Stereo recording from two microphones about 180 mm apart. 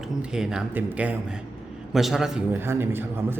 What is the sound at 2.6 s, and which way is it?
Speech, 15° right (ahead or behind).